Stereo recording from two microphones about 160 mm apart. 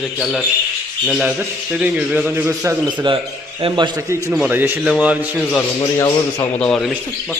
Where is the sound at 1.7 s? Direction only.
5° right (ahead or behind).